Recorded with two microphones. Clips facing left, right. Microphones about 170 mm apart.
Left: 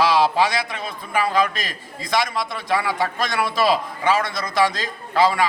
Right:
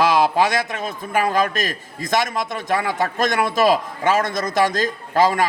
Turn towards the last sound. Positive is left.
turn(degrees=-45)  # may be behind; listen again after turning